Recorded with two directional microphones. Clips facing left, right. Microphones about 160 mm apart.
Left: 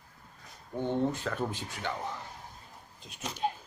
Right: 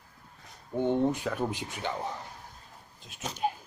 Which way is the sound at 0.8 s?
15° right (ahead or behind).